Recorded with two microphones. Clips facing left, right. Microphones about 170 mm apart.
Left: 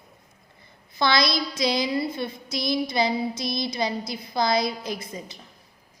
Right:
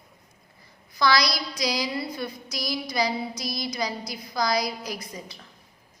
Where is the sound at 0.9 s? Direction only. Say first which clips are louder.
Left 1 dB; 25° left (ahead or behind).